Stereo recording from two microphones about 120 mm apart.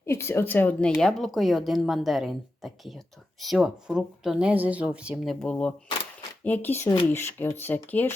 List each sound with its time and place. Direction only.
0.0 s speech: 20° left (ahead or behind)